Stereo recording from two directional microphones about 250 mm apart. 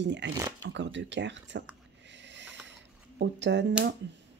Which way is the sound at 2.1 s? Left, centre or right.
Right.